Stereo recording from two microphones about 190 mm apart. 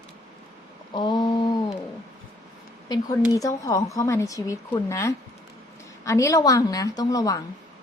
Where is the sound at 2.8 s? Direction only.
20° left (ahead or behind).